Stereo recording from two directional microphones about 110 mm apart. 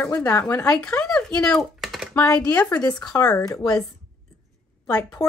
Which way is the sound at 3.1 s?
30° left (ahead or behind).